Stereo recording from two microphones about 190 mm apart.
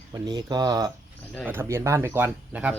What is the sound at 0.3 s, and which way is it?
Speech, 20° right (ahead or behind).